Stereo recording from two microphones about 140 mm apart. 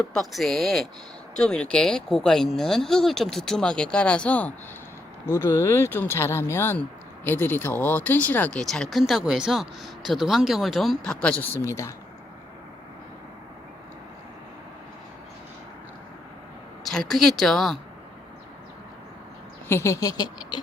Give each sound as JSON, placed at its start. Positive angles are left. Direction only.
{"t": 0.1, "sound": "speech", "side_deg": 0}
{"t": 16.8, "sound": "speech", "side_deg": 0}
{"t": 19.6, "sound": "speech", "side_deg": 20}